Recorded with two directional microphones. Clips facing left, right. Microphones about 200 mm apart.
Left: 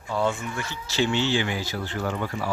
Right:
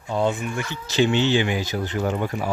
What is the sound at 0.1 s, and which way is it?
Speech, 20° right (ahead or behind).